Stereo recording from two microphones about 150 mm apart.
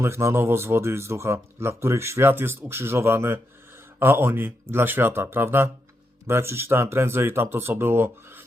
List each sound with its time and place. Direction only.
0.0 s speech: 15° right (ahead or behind)